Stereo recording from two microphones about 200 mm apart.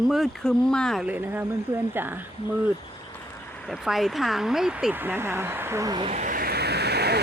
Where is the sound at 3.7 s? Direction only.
Centre (ahead or behind); by 6.1 s 20° right (ahead or behind).